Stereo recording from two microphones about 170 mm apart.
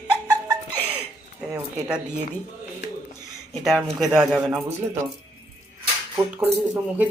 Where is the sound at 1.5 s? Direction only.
10° right (ahead or behind).